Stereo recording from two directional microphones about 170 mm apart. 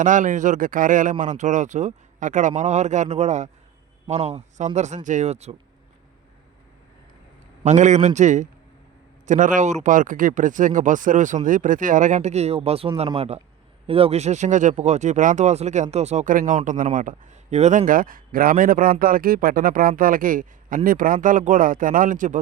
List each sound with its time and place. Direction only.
0.0 s speech: 50° right (ahead or behind)
7.6 s speech: 45° right (ahead or behind)